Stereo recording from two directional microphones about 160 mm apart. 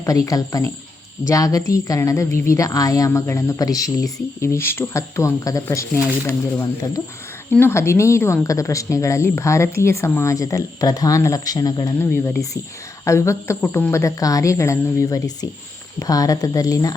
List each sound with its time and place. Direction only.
0.0 s a woman's voice: 20° left (ahead or behind)